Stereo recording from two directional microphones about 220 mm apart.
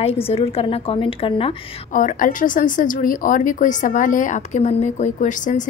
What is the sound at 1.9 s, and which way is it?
A woman's voice, 35° left (ahead or behind).